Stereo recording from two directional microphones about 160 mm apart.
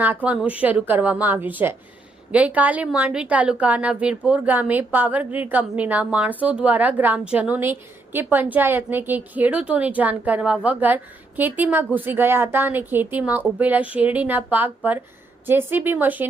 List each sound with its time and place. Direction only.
0.0 s a woman's voice: 10° right (ahead or behind)